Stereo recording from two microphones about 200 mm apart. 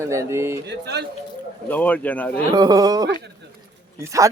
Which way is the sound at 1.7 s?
10° left (ahead or behind).